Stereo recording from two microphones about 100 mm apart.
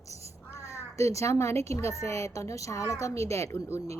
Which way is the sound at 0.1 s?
90° right.